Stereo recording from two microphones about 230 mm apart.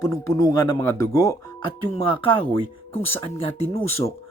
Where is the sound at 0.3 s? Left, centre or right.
Centre.